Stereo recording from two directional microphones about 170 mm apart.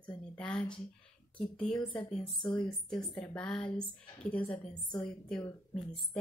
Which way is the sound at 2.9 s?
10° left (ahead or behind).